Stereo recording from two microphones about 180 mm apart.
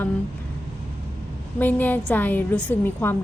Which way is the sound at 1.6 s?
10° left (ahead or behind).